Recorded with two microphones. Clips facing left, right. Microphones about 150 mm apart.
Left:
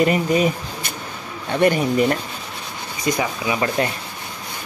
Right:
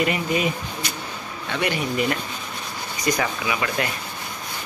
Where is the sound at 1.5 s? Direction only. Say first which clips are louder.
Left 8 dB; 45° left (ahead or behind).